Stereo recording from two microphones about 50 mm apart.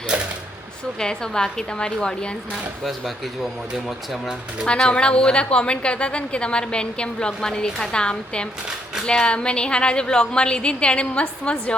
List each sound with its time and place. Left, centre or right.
0.9 s a woman's voice: centre
3.4 s speech: centre
4.6 s a woman's voice: centre